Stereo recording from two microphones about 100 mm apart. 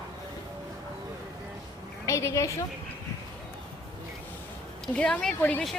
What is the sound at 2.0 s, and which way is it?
Speech, 30° left (ahead or behind).